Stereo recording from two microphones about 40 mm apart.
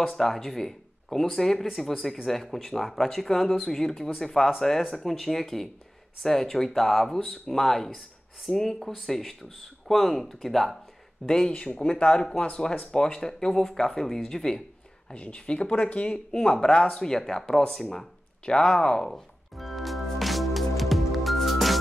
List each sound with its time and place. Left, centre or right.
0.0 s speech: centre
11.2 s speech: centre
11.5 s speech: left
15.1 s speech: left
16.3 s speech: centre
18.4 s speech: centre
19.5 s music: centre